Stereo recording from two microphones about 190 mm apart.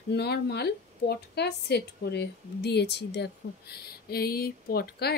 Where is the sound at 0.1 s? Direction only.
60° left (ahead or behind).